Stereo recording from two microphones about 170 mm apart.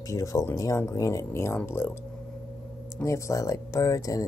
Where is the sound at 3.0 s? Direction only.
20° left (ahead or behind).